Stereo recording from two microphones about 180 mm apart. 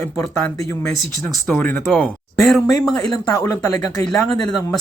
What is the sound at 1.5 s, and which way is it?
Speech, 10° left (ahead or behind).